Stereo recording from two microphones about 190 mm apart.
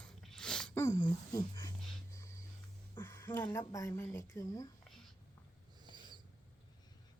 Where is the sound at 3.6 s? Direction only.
15° left (ahead or behind).